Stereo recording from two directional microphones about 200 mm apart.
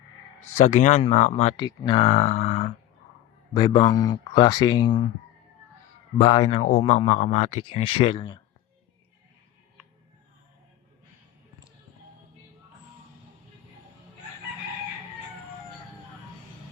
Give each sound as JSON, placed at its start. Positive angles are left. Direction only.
{"t": 0.3, "sound": "speech", "side_deg": 35}
{"t": 2.0, "sound": "speech", "side_deg": 35}
{"t": 3.5, "sound": "speech", "side_deg": 20}
{"t": 6.1, "sound": "speech", "side_deg": 25}